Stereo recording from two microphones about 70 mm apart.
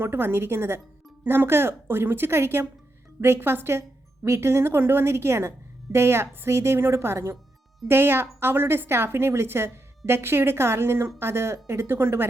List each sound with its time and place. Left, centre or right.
0.0 s speech: right